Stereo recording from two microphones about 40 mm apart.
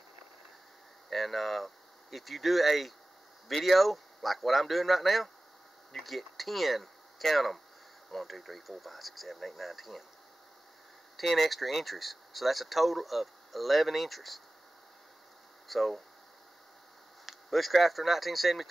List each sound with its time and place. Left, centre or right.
1.1 s speech: centre
11.2 s speech: centre
15.7 s speech: centre
17.3 s speech: centre